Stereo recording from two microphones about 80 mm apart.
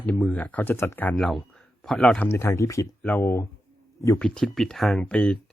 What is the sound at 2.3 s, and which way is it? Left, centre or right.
Speech, left.